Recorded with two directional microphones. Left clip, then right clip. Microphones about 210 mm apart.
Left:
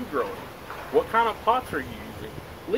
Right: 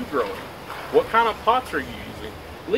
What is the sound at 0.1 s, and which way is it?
Speech, 5° right (ahead or behind).